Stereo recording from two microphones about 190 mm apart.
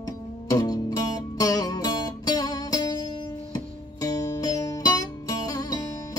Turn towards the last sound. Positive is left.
turn(degrees=20)  # may be behind; listen again after turning